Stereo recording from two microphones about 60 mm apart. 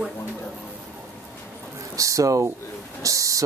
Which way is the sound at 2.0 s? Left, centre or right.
Right.